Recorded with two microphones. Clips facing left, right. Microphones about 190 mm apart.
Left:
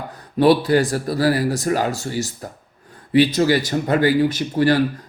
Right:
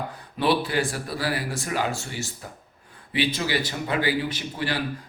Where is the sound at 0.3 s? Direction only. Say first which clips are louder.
Left 9 dB; 40° left (ahead or behind).